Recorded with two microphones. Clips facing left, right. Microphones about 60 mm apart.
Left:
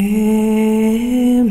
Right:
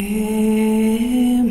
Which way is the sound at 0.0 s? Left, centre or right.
Centre.